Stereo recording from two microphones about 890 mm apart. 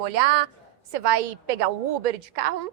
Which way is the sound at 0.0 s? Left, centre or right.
Right.